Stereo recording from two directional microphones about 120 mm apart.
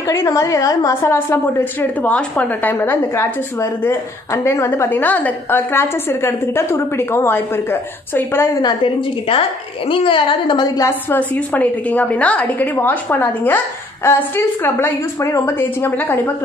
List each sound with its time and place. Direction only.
0.0 s a woman's voice: 25° left (ahead or behind)
1.1 s a woman's voice: 15° left (ahead or behind)
8.6 s a woman's voice: 45° left (ahead or behind)
10.9 s a woman's voice: 15° left (ahead or behind)